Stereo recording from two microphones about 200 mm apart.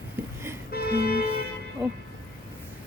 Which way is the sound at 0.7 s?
50° left (ahead or behind).